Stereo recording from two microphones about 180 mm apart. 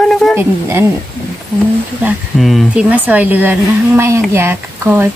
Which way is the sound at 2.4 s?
Centre (ahead or behind).